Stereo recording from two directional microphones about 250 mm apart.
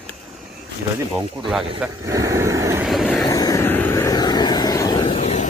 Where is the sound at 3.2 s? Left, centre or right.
Centre.